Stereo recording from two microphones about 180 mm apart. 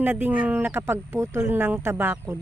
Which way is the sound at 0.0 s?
10° right (ahead or behind).